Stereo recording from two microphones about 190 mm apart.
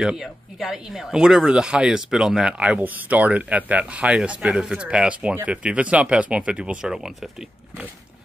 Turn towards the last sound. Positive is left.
turn(degrees=-5)  # may be behind; listen again after turning